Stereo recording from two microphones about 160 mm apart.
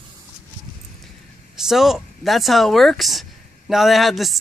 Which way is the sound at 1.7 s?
Centre (ahead or behind).